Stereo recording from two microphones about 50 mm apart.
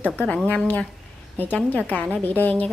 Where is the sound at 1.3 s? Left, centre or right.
Left.